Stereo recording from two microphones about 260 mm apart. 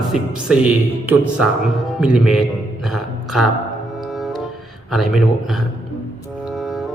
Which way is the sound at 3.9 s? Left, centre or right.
Centre.